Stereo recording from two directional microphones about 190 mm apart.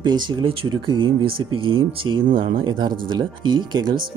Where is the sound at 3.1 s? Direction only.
25° right (ahead or behind).